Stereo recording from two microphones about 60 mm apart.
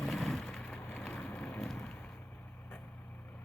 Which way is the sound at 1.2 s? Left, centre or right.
Left.